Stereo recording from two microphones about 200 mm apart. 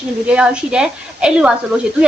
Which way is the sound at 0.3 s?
5° right (ahead or behind).